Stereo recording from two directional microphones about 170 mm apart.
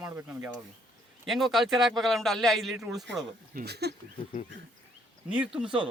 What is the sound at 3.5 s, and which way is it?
Speech, 65° right (ahead or behind).